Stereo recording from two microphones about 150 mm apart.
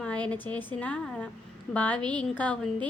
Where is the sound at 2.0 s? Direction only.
30° right (ahead or behind).